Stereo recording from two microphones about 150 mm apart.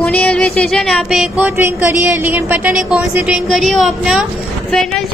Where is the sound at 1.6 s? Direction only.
15° right (ahead or behind).